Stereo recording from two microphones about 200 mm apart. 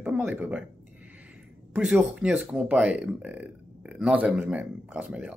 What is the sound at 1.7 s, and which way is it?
Speech, centre (ahead or behind).